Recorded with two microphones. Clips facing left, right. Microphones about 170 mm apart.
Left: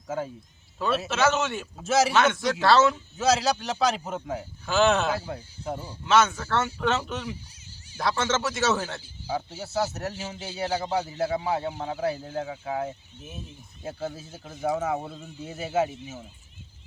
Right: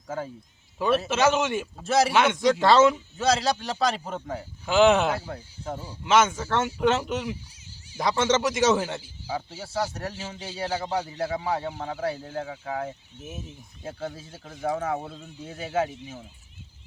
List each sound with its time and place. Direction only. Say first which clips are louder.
0.8 s speech: right 2 dB; 15° right (ahead or behind)
1.8 s a man's voice: even; centre (ahead or behind)
2.1 s speech: right 2 dB; 15° right (ahead or behind)
3.2 s a man's voice: left 5 dB; 5° left (ahead or behind)
4.6 s speech: right 3 dB; 15° right (ahead or behind)
5.1 s a man's voice: left 1 dB; 5° left (ahead or behind)
6.1 s speech: right 1 dB; 15° right (ahead or behind)
9.3 s a man's voice: left 2 dB; centre (ahead or behind)